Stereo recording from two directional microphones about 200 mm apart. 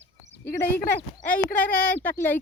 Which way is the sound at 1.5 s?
10° left (ahead or behind).